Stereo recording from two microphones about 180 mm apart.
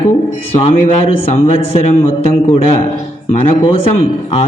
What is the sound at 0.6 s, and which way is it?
Speech, 35° left (ahead or behind).